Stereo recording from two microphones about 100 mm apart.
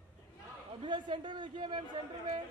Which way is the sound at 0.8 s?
50° right (ahead or behind).